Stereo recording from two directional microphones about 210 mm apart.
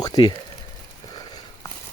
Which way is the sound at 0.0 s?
20° left (ahead or behind).